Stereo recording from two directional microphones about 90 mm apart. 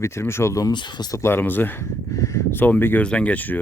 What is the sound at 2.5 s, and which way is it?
Speech, 20° left (ahead or behind).